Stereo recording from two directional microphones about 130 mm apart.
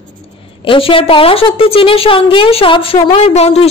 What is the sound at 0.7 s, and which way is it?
A woman's voice, 45° left (ahead or behind).